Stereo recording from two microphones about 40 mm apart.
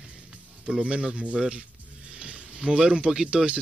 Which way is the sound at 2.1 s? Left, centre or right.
Right.